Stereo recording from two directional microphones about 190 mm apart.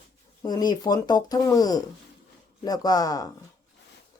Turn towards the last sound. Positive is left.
turn(degrees=20)  # may be behind; listen again after turning